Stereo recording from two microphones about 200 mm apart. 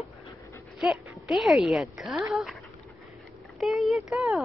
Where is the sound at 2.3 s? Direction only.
Centre (ahead or behind).